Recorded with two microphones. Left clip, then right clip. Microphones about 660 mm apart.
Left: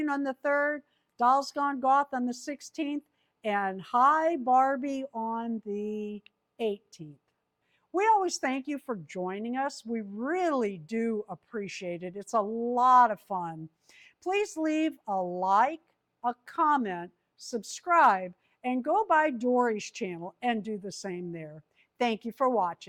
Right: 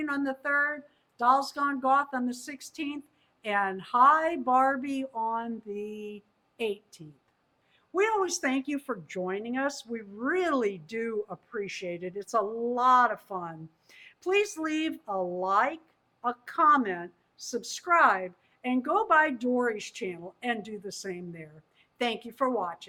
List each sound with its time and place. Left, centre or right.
0.0 s a woman's voice: left
7.9 s a woman's voice: left